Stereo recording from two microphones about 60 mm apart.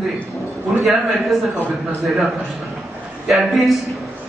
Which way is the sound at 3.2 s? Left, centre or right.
Centre.